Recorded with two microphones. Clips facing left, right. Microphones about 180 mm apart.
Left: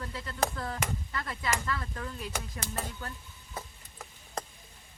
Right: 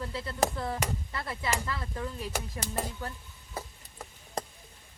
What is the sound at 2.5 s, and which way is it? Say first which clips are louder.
Speech: right 3 dB; 10° right (ahead or behind).